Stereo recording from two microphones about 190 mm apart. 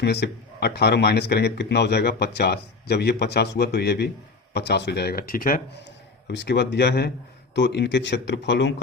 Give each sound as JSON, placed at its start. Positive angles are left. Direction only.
{"t": 0.0, "sound": "speech", "side_deg": 60}
{"t": 6.2, "sound": "speech", "side_deg": 65}